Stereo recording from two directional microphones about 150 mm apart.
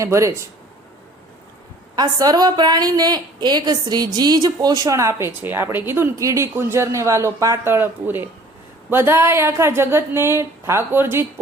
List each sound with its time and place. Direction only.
0.0 s a woman's voice: 20° right (ahead or behind)
2.0 s a woman's voice: 25° right (ahead or behind)